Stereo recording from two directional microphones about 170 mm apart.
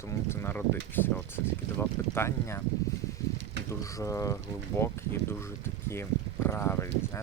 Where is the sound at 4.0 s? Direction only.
20° left (ahead or behind).